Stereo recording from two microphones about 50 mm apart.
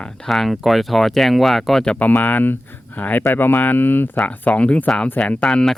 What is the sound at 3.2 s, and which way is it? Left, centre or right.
Speech, left.